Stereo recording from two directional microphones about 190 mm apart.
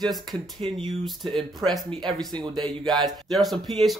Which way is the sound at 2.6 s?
Centre (ahead or behind).